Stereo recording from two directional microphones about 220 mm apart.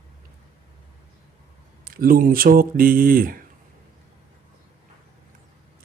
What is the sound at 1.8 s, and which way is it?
Speech, 40° right (ahead or behind).